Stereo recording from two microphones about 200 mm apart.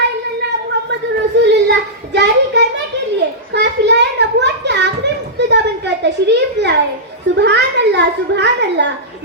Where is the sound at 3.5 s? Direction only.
60° right (ahead or behind).